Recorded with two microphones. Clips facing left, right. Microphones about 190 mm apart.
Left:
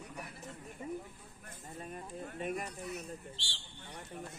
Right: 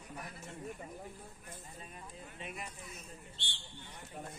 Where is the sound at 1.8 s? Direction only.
50° left (ahead or behind).